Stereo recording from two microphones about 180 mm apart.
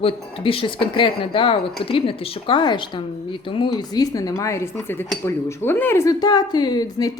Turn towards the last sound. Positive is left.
turn(degrees=20)  # may be behind; listen again after turning